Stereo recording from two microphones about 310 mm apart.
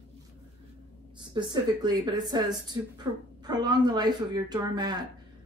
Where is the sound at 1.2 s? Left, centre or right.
Centre.